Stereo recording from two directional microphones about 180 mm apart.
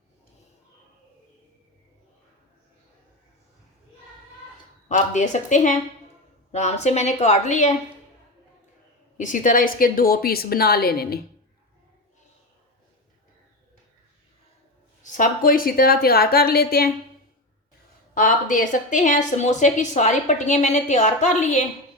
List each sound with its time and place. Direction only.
4.9 s a woman's voice: 45° left (ahead or behind)
9.1 s a woman's voice: 45° left (ahead or behind)
15.0 s a woman's voice: 45° left (ahead or behind)
18.1 s a woman's voice: 45° left (ahead or behind)